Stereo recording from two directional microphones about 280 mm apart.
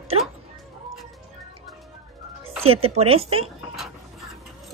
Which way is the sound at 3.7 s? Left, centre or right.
Centre.